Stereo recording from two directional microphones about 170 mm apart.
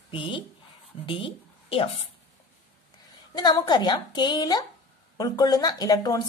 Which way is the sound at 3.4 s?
25° left (ahead or behind).